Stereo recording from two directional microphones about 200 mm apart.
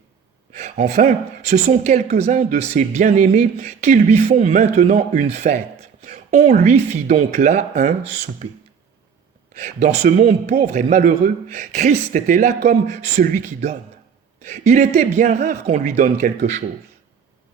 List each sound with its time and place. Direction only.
0.6 s speech: 40° right (ahead or behind)
9.6 s speech: 35° right (ahead or behind)
14.4 s speech: 35° right (ahead or behind)